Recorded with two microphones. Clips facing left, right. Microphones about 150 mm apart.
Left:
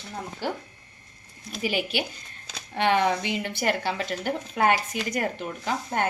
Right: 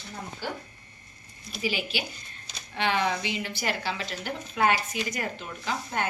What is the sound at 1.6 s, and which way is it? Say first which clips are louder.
A woman's voice: left 3 dB; 60° left (ahead or behind).